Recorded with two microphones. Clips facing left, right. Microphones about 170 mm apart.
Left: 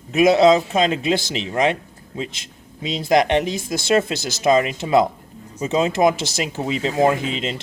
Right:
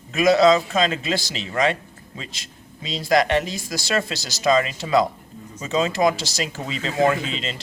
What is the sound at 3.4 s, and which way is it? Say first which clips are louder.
Speech: left 6 dB; 55° left (ahead or behind).